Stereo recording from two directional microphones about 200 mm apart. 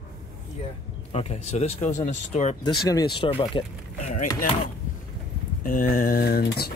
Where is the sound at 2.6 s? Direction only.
20° left (ahead or behind); by 4.3 s 35° left (ahead or behind).